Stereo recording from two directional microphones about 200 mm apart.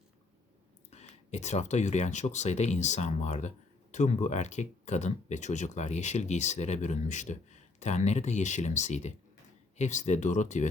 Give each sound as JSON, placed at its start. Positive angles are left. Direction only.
{"t": 0.9, "sound": "speech", "side_deg": 35}